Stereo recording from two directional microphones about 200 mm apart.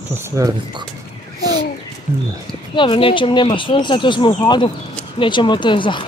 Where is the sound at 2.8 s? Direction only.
25° left (ahead or behind).